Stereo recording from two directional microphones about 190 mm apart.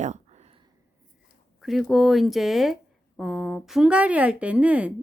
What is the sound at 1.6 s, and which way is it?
Speech, centre (ahead or behind).